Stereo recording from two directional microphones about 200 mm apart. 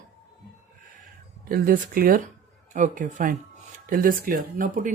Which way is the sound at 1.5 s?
45° right (ahead or behind).